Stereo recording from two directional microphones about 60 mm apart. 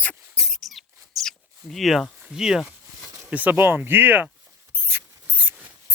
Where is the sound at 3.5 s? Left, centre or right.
Right.